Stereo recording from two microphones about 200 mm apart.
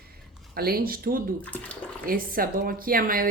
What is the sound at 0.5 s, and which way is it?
Speech, 50° right (ahead or behind).